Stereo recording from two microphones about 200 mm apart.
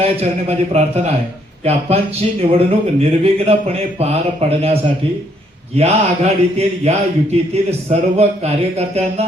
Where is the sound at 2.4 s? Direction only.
30° right (ahead or behind).